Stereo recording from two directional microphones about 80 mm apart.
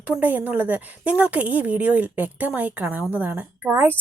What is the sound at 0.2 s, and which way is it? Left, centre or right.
A woman's voice, right.